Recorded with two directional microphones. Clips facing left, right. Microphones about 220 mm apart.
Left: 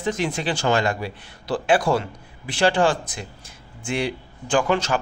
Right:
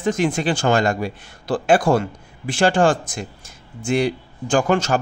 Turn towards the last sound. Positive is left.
turn(degrees=-45)  # may be behind; listen again after turning